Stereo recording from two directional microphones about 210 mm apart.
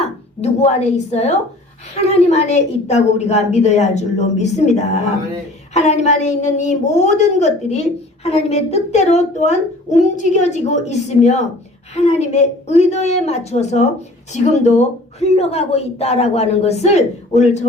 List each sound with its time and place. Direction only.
0.0 s a woman's voice: 30° left (ahead or behind)